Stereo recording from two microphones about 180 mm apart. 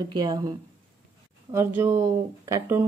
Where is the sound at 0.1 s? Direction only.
25° right (ahead or behind).